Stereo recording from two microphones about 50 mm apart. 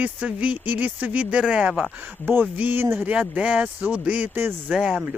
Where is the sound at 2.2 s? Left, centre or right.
Right.